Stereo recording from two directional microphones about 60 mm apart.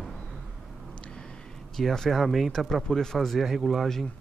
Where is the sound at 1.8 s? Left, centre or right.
Centre.